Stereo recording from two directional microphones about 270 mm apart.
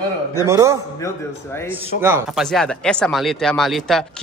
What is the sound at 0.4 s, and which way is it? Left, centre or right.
Speech, centre.